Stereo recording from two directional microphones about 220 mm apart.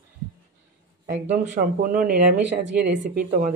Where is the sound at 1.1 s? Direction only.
35° right (ahead or behind).